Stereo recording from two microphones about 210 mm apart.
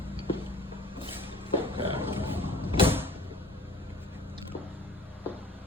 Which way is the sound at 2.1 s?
10° right (ahead or behind).